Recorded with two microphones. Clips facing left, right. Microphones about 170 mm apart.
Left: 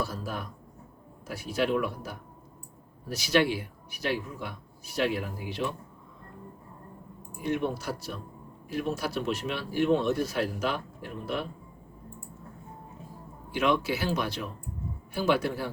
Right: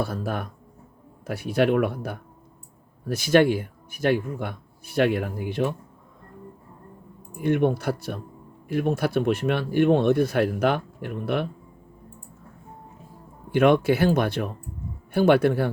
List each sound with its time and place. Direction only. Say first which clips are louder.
0.0 s speech: right 6 dB; 60° right (ahead or behind)
7.4 s speech: right 8 dB; 55° right (ahead or behind)
13.5 s speech: right 8 dB; 55° right (ahead or behind)